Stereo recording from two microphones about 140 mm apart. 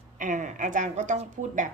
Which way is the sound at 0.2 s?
70° right (ahead or behind).